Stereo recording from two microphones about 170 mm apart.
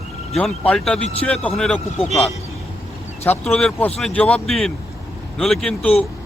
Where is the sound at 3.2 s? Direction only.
5° left (ahead or behind).